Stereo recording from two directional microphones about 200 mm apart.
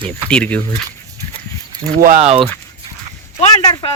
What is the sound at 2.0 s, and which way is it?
Speech, 45° right (ahead or behind).